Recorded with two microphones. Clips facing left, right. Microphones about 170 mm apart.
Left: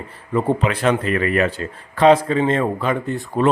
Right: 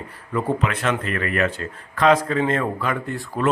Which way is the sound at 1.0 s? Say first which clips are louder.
Left 6 dB; 45° right (ahead or behind).